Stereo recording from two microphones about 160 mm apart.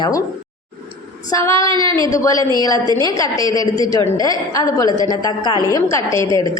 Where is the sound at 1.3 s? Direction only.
20° left (ahead or behind).